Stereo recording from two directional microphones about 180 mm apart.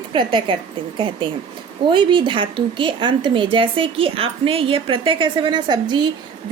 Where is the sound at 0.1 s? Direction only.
25° right (ahead or behind).